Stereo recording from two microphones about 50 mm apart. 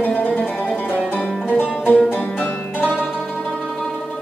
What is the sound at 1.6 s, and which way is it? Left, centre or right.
Music, left.